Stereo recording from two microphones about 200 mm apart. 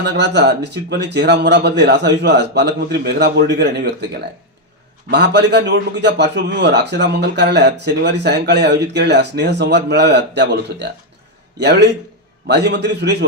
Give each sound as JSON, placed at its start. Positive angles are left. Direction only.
{"t": 0.0, "sound": "a man's voice", "side_deg": -55}
{"t": 5.1, "sound": "a man's voice", "side_deg": -55}